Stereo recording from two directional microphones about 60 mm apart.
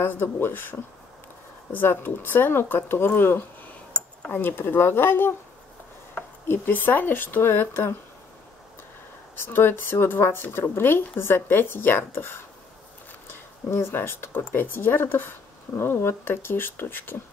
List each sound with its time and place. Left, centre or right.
0.0 s speech: left
6.4 s speech: left
9.4 s speech: left
13.7 s speech: left